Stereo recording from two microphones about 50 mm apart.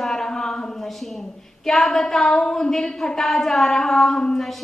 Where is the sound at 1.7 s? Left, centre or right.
Centre.